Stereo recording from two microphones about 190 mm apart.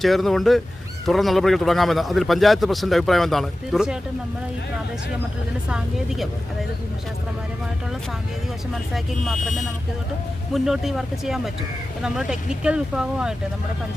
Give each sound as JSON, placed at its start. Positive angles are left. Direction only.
{"t": 0.0, "sound": "a man's voice", "side_deg": 0}
{"t": 5.6, "sound": "a man's voice", "side_deg": -5}
{"t": 8.9, "sound": "a man's voice", "side_deg": 0}
{"t": 10.5, "sound": "a man's voice", "side_deg": 0}